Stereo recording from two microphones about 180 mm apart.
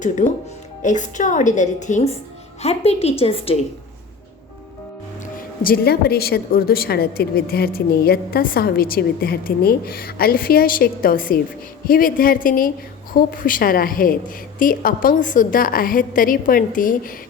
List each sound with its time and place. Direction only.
0.2 s a woman's voice: 45° left (ahead or behind)
5.6 s a woman's voice: 60° left (ahead or behind)